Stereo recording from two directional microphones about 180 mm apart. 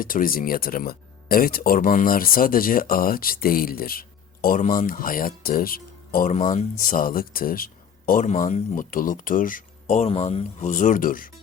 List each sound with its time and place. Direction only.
0.0 s speech: 50° left (ahead or behind)
6.3 s speech: 40° left (ahead or behind)